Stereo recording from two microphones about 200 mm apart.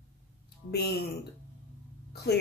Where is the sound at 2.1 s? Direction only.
55° left (ahead or behind).